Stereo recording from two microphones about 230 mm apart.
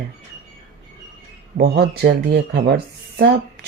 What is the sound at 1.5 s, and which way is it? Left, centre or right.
Speech, right.